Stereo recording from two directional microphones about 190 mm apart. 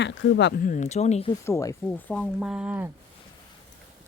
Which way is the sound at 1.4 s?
15° left (ahead or behind).